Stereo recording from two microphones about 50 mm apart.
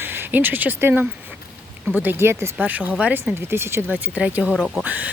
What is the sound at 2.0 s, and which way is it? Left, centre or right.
Speech, right.